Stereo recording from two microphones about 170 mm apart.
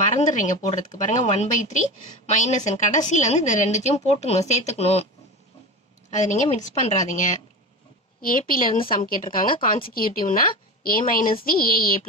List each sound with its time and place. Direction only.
0.0 s a woman's voice: 45° left (ahead or behind)
6.0 s a woman's voice: 45° left (ahead or behind)
8.2 s a woman's voice: 55° left (ahead or behind)